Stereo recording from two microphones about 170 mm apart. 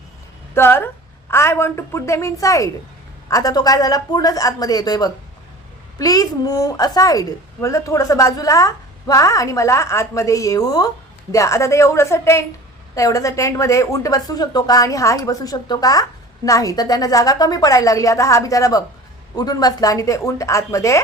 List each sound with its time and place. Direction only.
0.5 s a woman's voice: 15° left (ahead or behind)